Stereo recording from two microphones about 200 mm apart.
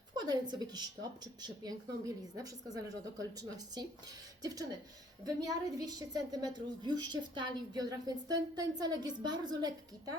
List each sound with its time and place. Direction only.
0.1 s speech: 20° right (ahead or behind)